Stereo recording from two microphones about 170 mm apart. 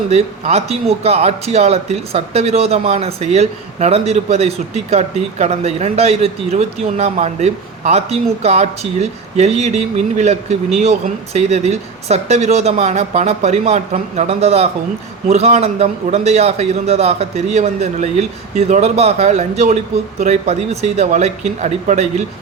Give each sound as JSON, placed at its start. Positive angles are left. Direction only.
{"t": 0.1, "sound": "speech", "side_deg": -40}